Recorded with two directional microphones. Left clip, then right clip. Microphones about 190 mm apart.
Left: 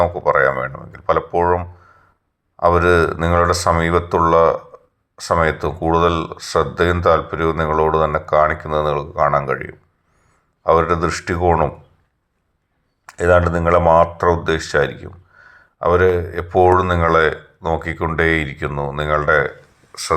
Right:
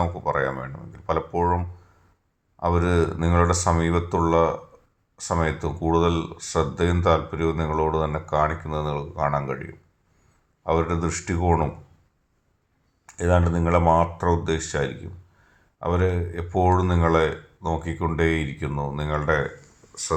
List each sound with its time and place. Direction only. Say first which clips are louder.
0.0 s speech: left 10 dB; 15° left (ahead or behind)
13.1 s speech: left 9 dB; 15° left (ahead or behind)